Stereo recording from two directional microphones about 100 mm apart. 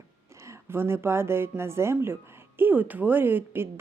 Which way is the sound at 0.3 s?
30° right (ahead or behind).